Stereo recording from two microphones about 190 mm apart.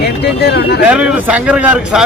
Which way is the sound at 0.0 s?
55° left (ahead or behind).